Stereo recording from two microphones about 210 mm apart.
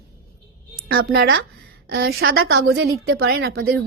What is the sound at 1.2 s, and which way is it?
A woman's voice, 55° right (ahead or behind).